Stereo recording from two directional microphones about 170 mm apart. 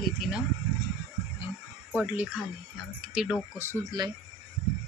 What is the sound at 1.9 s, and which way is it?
Speech, 10° right (ahead or behind).